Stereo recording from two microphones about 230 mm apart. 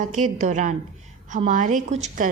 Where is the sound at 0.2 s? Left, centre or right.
Right.